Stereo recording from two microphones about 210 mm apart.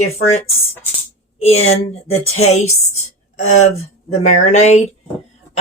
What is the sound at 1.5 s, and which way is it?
Speech, 30° left (ahead or behind).